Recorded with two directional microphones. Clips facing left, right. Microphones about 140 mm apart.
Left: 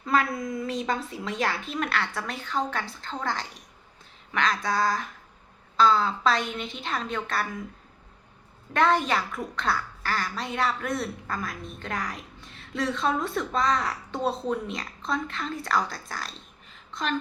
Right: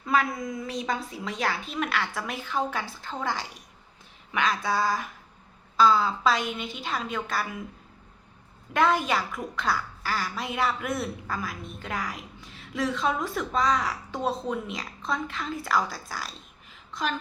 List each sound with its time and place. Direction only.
0.0 s a woman's voice: centre (ahead or behind)
4.3 s a sound: 10° right (ahead or behind)
5.7 s a woman's voice: 5° right (ahead or behind)
8.7 s a woman's voice: 5° right (ahead or behind)